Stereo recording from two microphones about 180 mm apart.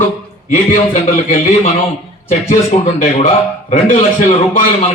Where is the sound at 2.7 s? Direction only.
30° left (ahead or behind).